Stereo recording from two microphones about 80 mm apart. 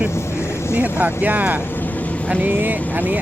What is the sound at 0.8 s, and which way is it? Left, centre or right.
Speech, right.